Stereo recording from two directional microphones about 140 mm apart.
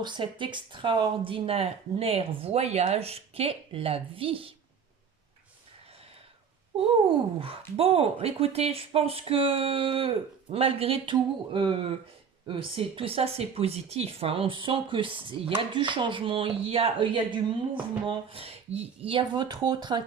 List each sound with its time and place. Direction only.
0.0 s speech: 35° right (ahead or behind)
7.4 s speech: 40° right (ahead or behind)